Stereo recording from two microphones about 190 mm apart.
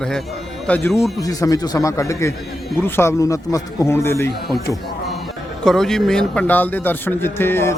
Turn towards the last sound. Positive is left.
turn(degrees=10)  # may be behind; listen again after turning